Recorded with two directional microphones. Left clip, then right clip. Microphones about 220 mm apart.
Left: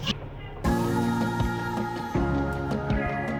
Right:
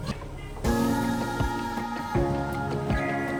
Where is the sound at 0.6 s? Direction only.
Centre (ahead or behind).